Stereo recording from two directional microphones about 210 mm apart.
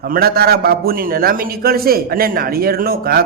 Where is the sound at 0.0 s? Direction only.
45° right (ahead or behind).